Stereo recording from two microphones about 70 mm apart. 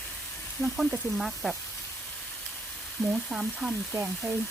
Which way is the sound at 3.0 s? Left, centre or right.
Left.